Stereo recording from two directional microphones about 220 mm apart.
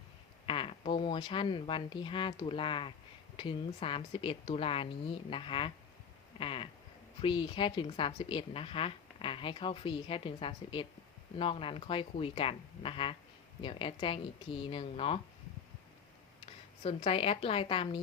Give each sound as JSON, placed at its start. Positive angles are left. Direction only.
{"t": 0.4, "sound": "a woman's voice", "side_deg": 25}
{"t": 16.5, "sound": "speech", "side_deg": 25}